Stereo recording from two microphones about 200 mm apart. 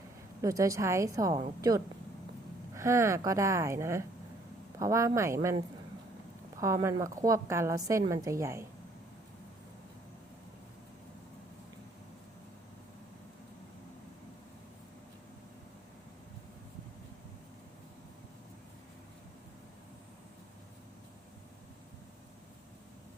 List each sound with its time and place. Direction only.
0.4 s a woman's voice: 15° right (ahead or behind)
2.7 s a woman's voice: 15° right (ahead or behind)